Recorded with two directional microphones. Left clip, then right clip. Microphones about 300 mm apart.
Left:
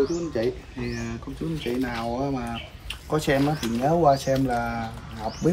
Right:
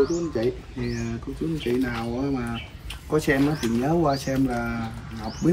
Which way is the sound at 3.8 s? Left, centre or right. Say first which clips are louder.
Left 5 dB; left.